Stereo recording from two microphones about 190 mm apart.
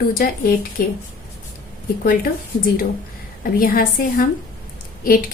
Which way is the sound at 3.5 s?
50° left (ahead or behind).